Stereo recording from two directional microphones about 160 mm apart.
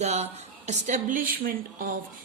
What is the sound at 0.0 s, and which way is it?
A woman's voice, 45° right (ahead or behind).